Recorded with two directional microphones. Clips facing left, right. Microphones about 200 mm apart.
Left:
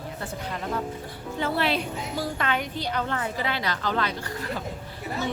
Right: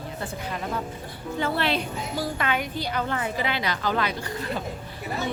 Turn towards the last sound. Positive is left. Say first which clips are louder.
# right 1 dB
turn(degrees=-10)  # may be behind; listen again after turning